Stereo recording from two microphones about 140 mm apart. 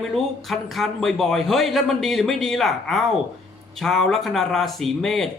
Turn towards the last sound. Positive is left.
turn(degrees=0)  # may be behind; listen again after turning